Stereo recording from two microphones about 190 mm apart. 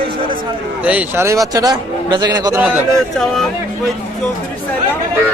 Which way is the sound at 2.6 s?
5° right (ahead or behind).